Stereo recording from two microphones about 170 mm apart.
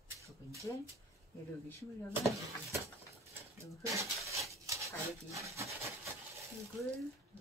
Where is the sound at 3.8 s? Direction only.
20° right (ahead or behind).